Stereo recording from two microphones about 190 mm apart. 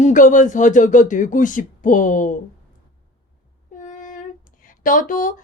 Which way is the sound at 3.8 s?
45° left (ahead or behind).